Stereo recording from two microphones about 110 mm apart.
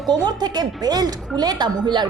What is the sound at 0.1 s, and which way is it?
A woman's voice, 40° right (ahead or behind).